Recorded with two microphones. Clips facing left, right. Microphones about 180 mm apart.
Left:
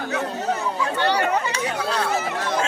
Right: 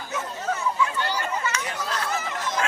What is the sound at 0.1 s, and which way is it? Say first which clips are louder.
Chatter: left 3 dB; 70° left (ahead or behind).